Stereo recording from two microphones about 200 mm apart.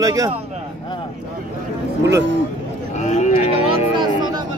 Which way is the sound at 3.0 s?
35° left (ahead or behind).